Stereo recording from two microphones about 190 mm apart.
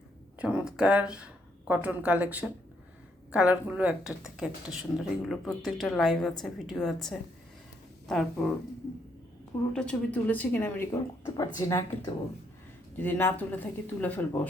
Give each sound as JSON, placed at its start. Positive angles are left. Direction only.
{"t": 0.3, "sound": "speech", "side_deg": -5}
{"t": 9.7, "sound": "speech", "side_deg": 5}